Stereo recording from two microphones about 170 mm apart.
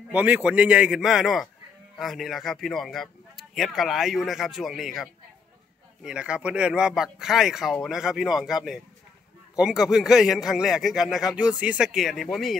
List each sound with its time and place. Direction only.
0.1 s speech: 10° right (ahead or behind)